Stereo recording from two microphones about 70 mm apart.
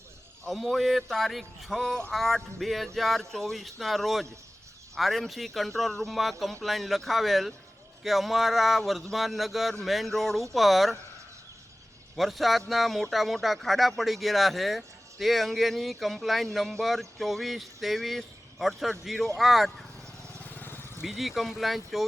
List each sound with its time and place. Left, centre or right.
0.4 s speech: centre
12.1 s speech: centre
20.4 s vehicle: left
21.0 s speech: centre